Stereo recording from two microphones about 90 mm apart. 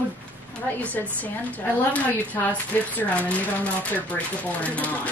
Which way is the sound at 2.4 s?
30° left (ahead or behind).